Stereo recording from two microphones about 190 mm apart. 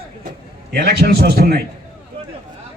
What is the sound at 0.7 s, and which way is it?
Speech, 60° right (ahead or behind).